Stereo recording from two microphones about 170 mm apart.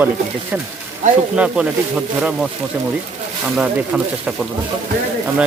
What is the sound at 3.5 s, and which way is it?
Speech, 10° right (ahead or behind).